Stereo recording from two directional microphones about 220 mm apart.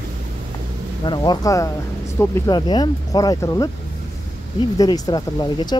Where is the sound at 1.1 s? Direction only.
20° left (ahead or behind).